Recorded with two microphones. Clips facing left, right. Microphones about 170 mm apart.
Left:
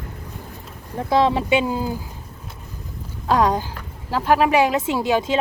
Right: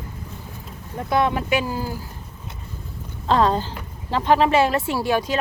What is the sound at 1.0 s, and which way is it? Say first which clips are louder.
Speech: left 3 dB; 25° left (ahead or behind).